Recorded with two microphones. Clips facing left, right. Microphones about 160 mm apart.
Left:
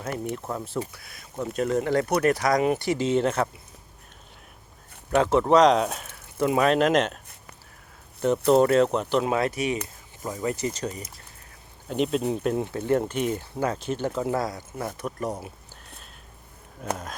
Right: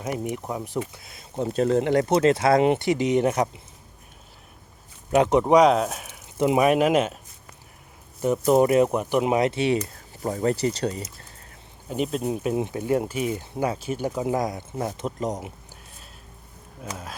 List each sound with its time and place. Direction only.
0.0 s speech: 15° right (ahead or behind)
5.1 s speech: 20° right (ahead or behind)
8.2 s speech: 10° right (ahead or behind); by 11.0 s 30° right (ahead or behind)
11.9 s speech: 5° right (ahead or behind); by 15.5 s 20° right (ahead or behind)